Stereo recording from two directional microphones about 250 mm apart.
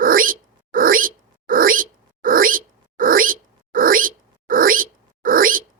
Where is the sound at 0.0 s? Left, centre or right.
Right.